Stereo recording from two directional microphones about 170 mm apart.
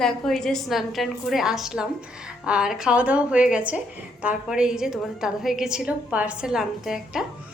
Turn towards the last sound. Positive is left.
turn(degrees=-5)  # may be behind; listen again after turning